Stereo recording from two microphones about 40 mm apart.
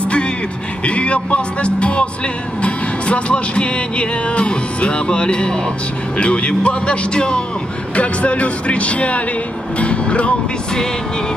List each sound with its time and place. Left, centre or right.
0.8 s speech: left